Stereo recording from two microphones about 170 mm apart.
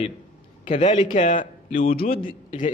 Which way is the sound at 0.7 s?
45° left (ahead or behind).